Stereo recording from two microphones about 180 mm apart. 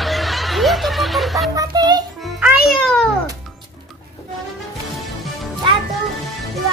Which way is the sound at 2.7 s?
5° left (ahead or behind).